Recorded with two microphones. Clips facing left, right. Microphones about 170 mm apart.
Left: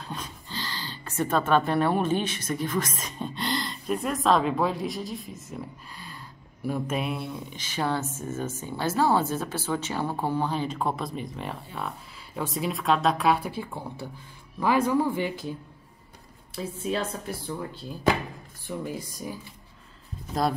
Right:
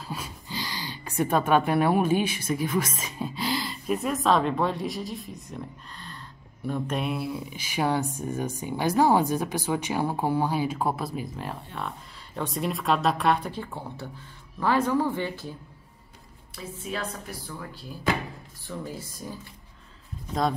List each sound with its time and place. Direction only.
0.0 s speech: 5° right (ahead or behind); by 15.5 s 15° left (ahead or behind)
16.5 s speech: 25° left (ahead or behind)
18.7 s speech: 15° left (ahead or behind)